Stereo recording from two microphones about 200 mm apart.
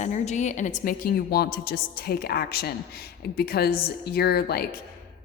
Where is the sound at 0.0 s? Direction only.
35° left (ahead or behind).